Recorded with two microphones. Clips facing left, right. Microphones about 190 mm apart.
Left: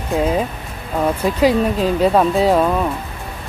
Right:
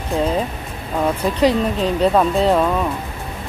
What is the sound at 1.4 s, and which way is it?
Speech, 5° left (ahead or behind).